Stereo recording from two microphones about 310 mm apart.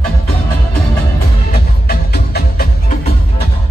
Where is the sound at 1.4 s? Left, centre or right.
Left.